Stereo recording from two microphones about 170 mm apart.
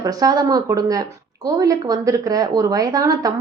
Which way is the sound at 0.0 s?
20° right (ahead or behind).